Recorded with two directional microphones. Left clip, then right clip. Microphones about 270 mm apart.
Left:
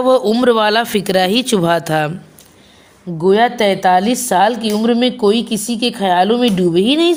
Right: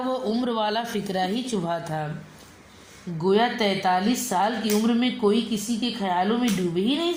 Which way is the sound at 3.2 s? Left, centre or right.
Left.